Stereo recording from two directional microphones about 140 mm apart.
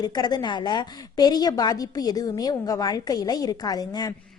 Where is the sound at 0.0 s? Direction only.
30° left (ahead or behind).